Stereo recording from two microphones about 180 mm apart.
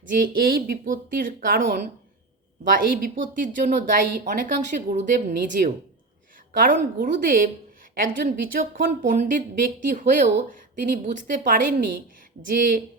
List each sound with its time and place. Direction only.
0.1 s speech: 50° right (ahead or behind)
2.6 s a woman's voice: 50° right (ahead or behind)